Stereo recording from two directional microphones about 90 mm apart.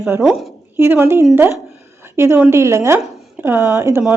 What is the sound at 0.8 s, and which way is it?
A woman's voice, 25° right (ahead or behind).